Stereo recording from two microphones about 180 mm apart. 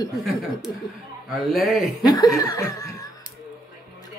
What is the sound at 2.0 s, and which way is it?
Speech, 20° left (ahead or behind).